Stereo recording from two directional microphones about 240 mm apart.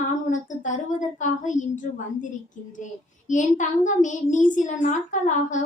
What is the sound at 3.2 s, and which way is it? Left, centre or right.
Speech, left.